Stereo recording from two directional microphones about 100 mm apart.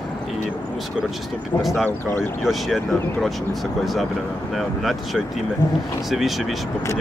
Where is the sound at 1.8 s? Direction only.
25° left (ahead or behind).